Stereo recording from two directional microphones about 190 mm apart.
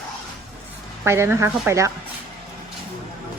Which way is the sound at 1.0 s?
15° right (ahead or behind).